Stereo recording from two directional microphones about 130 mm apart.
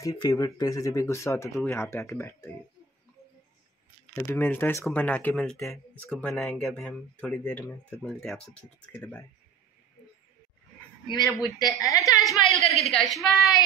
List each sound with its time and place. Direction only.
0.0 s speech: 25° left (ahead or behind)
4.1 s speech: 20° left (ahead or behind)
11.5 s speech: 25° left (ahead or behind)
12.2 s speech: centre (ahead or behind)